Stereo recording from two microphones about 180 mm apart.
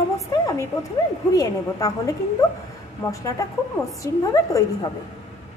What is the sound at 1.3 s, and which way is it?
A woman's voice, 20° left (ahead or behind).